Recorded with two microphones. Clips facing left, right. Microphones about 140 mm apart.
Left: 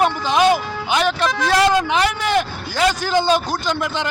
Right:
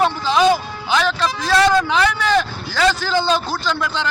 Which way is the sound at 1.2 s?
60° left (ahead or behind).